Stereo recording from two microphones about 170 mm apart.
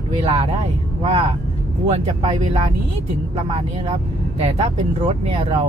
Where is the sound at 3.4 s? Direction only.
35° right (ahead or behind).